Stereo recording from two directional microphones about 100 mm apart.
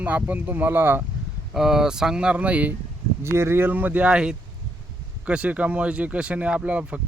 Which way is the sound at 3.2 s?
25° right (ahead or behind).